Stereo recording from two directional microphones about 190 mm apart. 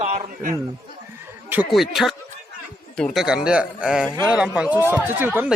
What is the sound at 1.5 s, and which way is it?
Speech, 5° right (ahead or behind).